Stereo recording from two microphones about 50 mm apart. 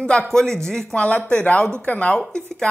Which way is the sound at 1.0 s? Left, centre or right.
Left.